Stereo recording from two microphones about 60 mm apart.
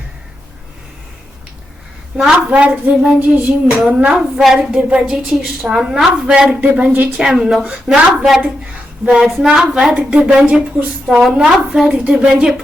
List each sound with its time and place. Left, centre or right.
2.1 s a woman's voice: centre
4.1 s a woman's voice: centre
6.6 s speech: right
7.2 s a woman's voice: centre
9.4 s a woman's voice: centre
9.9 s a woman's voice: centre
10.8 s a woman's voice: right